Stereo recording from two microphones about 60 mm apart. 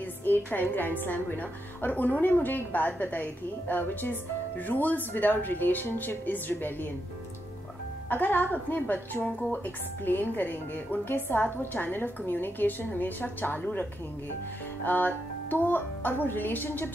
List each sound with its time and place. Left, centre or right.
0.0 s a woman's voice: left
8.1 s a woman's voice: left